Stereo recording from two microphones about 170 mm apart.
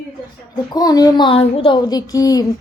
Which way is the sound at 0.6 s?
20° left (ahead or behind).